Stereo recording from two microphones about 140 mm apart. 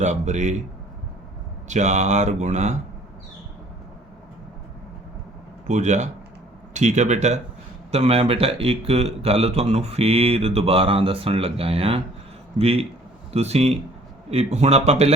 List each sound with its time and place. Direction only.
0.0 s speech: 55° right (ahead or behind)
1.6 s speech: 55° right (ahead or behind)
5.6 s speech: 60° right (ahead or behind)